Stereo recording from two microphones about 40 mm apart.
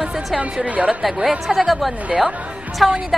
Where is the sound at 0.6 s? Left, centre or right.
Right.